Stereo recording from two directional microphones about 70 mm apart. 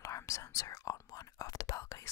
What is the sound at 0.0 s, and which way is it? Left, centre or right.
Whispering, left.